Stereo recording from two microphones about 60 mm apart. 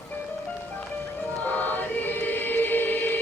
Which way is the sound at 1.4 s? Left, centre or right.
Left.